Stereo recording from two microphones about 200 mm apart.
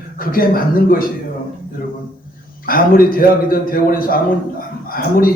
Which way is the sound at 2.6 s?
45° left (ahead or behind).